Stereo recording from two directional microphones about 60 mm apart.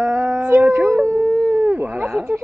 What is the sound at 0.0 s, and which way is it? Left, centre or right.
Howl, right.